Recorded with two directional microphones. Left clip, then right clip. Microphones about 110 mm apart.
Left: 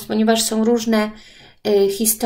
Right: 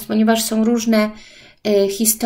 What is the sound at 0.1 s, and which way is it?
Speech, 40° right (ahead or behind).